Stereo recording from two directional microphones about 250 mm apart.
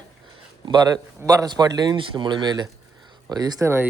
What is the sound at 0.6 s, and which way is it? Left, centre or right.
Speech, centre.